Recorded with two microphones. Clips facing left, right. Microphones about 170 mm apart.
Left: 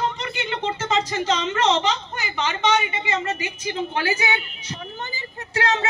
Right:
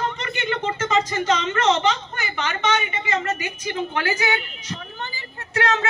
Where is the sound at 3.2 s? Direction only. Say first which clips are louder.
Even; 30° left (ahead or behind).